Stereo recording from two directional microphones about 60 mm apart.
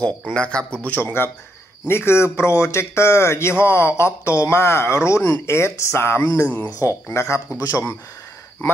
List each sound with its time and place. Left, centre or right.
0.3 s speech: centre
0.8 s a man's voice: left